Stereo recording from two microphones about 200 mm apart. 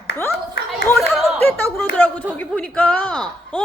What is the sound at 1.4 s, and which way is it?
A woman's voice, 10° left (ahead or behind).